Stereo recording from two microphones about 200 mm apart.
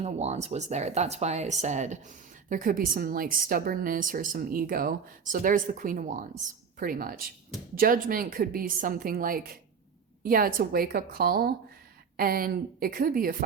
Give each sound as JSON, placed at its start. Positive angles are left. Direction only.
{"t": 0.0, "sound": "a woman's voice", "side_deg": -35}